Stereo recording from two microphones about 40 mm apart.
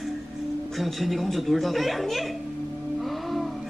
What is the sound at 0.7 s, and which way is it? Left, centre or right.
Speech, centre.